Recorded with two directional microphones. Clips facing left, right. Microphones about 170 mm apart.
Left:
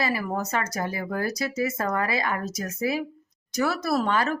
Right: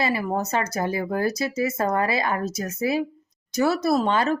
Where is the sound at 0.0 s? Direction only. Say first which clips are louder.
Right 3 dB; 25° right (ahead or behind).